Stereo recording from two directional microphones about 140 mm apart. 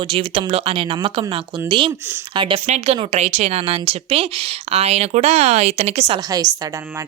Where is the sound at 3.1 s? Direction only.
50° right (ahead or behind).